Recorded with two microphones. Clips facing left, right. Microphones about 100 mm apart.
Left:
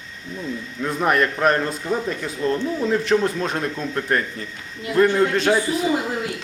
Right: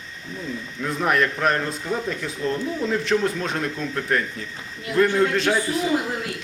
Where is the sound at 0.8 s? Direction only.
5° left (ahead or behind).